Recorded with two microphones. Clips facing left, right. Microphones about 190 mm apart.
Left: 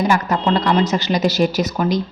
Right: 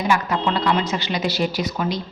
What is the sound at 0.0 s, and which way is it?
A woman's voice, 40° left (ahead or behind).